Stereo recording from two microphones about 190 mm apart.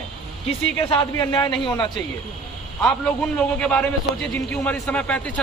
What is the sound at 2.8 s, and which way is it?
A man's voice, 5° left (ahead or behind).